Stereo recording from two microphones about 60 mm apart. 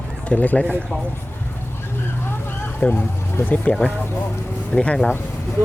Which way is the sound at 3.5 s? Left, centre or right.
Left.